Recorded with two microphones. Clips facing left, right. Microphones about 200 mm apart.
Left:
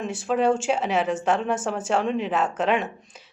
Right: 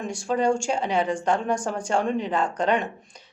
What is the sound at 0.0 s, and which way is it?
A woman's voice, 5° left (ahead or behind).